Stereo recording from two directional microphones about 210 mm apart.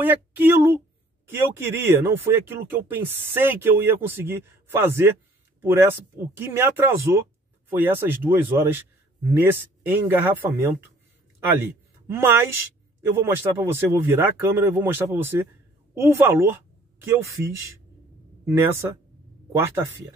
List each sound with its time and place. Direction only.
0.0 s speech: 10° right (ahead or behind)
12.1 s speech: 10° right (ahead or behind)